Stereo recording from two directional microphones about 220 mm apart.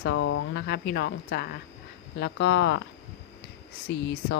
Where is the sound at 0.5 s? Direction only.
50° left (ahead or behind).